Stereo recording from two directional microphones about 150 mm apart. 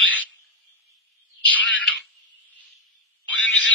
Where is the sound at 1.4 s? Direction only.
10° left (ahead or behind).